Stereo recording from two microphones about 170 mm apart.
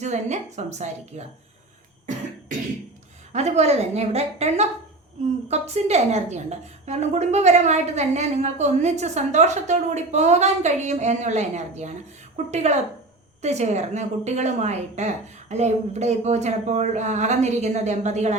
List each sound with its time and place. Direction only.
0.0 s a woman's voice: 45° right (ahead or behind)
3.3 s a woman's voice: 40° right (ahead or behind)